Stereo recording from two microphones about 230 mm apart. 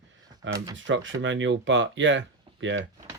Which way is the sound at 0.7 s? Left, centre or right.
Right.